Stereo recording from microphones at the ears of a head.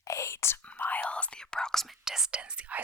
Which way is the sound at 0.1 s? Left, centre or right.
Left.